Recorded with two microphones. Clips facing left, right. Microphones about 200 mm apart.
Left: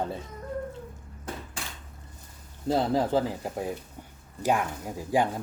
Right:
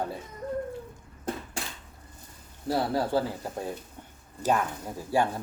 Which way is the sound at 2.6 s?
20° left (ahead or behind).